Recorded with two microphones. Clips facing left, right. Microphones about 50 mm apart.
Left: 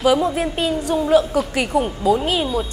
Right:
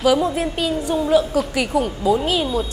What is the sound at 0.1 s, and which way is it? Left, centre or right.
A woman's voice, left.